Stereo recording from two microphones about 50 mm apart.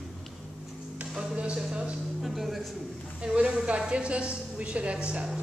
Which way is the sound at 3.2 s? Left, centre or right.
Centre.